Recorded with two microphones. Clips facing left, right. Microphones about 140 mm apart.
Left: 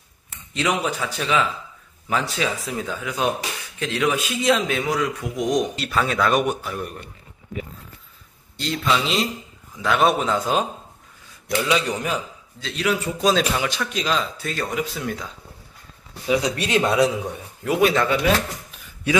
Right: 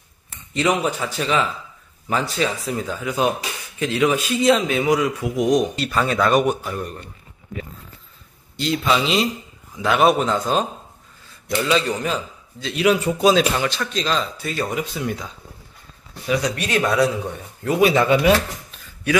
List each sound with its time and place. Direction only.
0.6 s a man's voice: centre (ahead or behind)
8.5 s a man's voice: 5° right (ahead or behind)
12.7 s a man's voice: 10° right (ahead or behind)
13.6 s a man's voice: 10° left (ahead or behind)
16.3 s speech: 20° left (ahead or behind)
17.7 s a man's voice: 5° right (ahead or behind)